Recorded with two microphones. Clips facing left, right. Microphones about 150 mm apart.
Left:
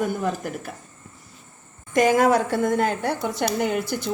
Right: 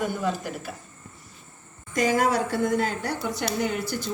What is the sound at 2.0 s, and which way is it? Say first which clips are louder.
Speech: left 5 dB; 50° left (ahead or behind).